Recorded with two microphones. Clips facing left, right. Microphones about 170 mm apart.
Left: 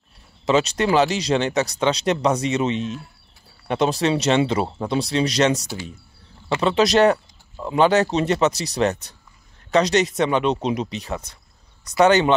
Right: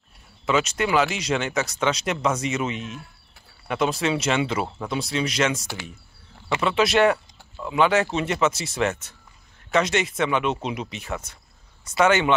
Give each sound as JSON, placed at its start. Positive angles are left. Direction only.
{"t": 0.5, "sound": "speech", "side_deg": 35}
{"t": 6.6, "sound": "speech", "side_deg": 40}